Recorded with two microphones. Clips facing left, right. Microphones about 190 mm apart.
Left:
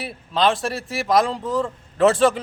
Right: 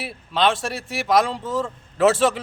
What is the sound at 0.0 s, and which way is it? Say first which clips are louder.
Speech: left 1 dB; centre (ahead or behind).